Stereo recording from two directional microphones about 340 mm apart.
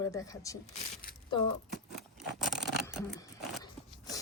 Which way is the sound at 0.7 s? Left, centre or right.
Left.